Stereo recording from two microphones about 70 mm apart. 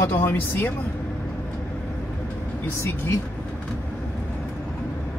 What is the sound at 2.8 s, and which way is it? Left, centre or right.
Speech, left.